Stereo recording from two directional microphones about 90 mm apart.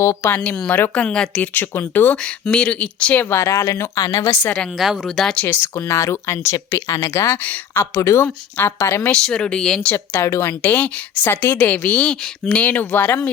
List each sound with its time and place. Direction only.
0.0 s speech: 35° left (ahead or behind)
0.3 s a woman's voice: 20° left (ahead or behind)
1.5 s a woman's voice: 25° left (ahead or behind)
2.5 s speech: 10° left (ahead or behind)
3.2 s speech: 35° left (ahead or behind)
4.8 s speech: centre (ahead or behind)
5.5 s a woman's voice: 25° left (ahead or behind)
8.8 s speech: 35° left (ahead or behind)
9.2 s speech: 10° left (ahead or behind)
9.9 s a woman's voice: 25° left (ahead or behind)
10.6 s speech: 20° left (ahead or behind)